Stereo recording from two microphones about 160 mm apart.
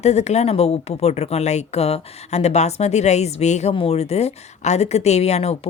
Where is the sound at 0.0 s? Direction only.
40° left (ahead or behind).